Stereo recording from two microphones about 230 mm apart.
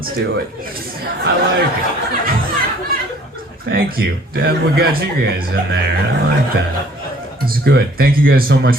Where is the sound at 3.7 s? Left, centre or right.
Right.